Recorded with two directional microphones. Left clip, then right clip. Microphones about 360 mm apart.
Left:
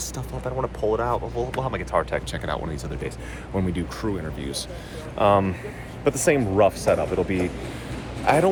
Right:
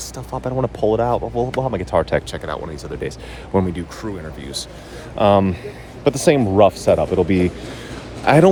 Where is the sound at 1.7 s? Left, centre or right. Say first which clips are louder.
Right 6 dB; right.